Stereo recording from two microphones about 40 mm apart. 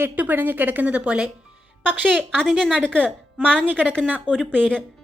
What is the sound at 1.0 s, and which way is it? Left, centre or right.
Speech, right.